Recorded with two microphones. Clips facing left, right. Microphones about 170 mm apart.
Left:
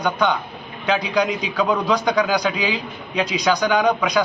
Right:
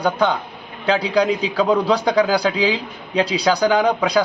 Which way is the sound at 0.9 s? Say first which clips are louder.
Right 3 dB; 30° right (ahead or behind).